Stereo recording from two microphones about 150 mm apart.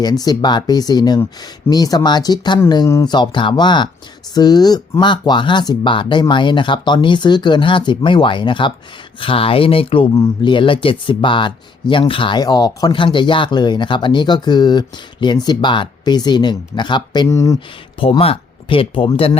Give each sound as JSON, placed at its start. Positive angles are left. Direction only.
{"t": 0.0, "sound": "speech", "side_deg": 25}
{"t": 17.2, "sound": "speech", "side_deg": 20}
{"t": 18.0, "sound": "speech", "side_deg": 40}